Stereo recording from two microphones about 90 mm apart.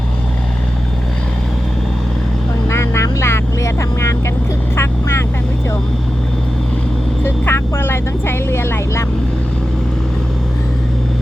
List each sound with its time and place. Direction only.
2.6 s vehicle: 30° left (ahead or behind)
7.3 s vehicle: 25° left (ahead or behind)